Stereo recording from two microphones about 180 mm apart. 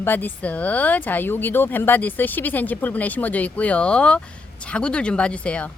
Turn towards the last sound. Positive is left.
turn(degrees=5)  # may be behind; listen again after turning